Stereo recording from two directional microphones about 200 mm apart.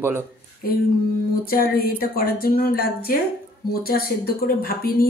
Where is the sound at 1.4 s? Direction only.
45° left (ahead or behind).